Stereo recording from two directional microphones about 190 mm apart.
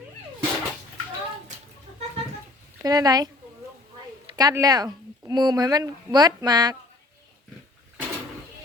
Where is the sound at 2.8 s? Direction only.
20° right (ahead or behind).